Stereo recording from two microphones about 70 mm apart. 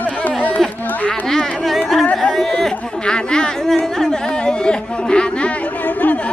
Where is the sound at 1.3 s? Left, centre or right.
Centre.